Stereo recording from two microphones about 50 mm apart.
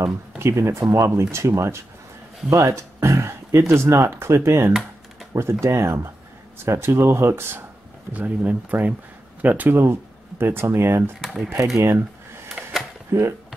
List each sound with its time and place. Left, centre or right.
0.4 s speech: right
1.3 s speech: right
6.6 s speech: right
8.1 s speech: right
10.4 s speech: right
11.1 s speech: centre
13.1 s speech: right